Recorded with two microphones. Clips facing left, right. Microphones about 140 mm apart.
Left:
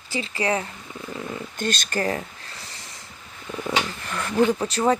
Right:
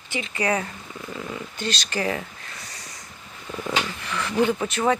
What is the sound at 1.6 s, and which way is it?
Speech, 50° left (ahead or behind).